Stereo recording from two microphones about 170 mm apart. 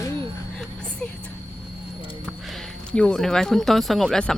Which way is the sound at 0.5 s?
5° left (ahead or behind).